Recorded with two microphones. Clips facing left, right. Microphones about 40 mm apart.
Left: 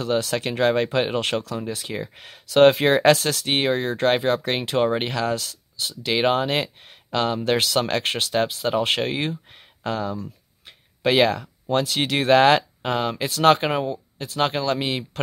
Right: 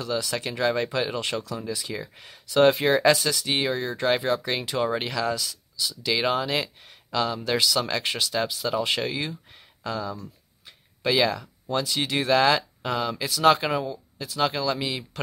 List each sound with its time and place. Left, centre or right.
0.0 s speech: left
1.7 s speech: left
6.0 s speech: left